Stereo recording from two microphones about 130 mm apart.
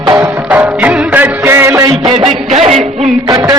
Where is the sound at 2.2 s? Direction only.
55° right (ahead or behind).